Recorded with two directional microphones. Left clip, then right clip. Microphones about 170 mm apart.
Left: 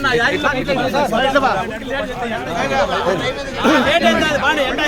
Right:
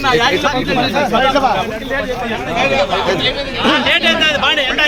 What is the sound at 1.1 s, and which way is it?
Speech, centre (ahead or behind).